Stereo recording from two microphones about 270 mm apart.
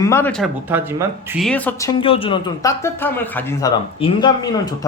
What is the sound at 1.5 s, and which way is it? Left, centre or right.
Speech, centre.